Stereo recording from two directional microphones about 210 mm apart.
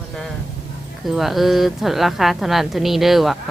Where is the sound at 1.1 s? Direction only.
Centre (ahead or behind).